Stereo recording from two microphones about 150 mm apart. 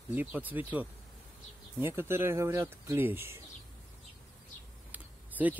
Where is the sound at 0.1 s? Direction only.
10° right (ahead or behind).